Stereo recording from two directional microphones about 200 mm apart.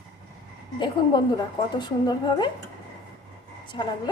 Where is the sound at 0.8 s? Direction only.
25° left (ahead or behind).